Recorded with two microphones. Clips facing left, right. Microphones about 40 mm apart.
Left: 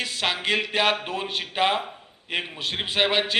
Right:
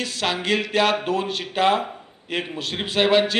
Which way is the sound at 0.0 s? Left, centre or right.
Centre.